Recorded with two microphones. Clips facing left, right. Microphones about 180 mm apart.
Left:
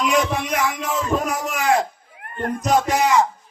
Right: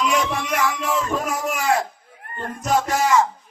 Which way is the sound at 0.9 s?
Centre (ahead or behind).